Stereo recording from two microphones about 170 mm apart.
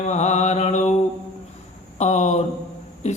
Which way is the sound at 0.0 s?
40° left (ahead or behind).